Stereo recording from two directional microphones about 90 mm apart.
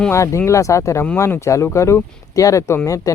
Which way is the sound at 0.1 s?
30° left (ahead or behind).